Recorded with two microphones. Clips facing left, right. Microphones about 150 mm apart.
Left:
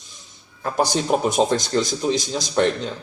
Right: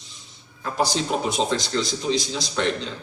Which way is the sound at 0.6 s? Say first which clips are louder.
Left 3 dB; 55° left (ahead or behind).